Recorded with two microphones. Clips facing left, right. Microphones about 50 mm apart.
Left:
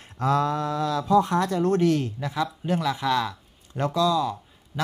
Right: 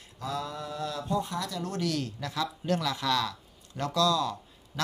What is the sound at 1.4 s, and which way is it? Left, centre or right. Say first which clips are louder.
Speech: left 11 dB; left.